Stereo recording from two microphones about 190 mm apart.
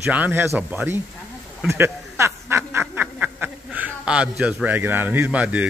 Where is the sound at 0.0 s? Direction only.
10° right (ahead or behind).